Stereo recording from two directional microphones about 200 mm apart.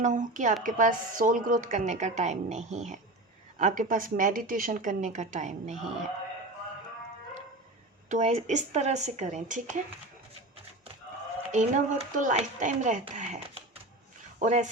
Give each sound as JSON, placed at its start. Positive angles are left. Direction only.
{"t": 0.0, "sound": "a woman's voice", "side_deg": -40}
{"t": 8.1, "sound": "a woman's voice", "side_deg": -35}
{"t": 11.5, "sound": "a woman's voice", "side_deg": -35}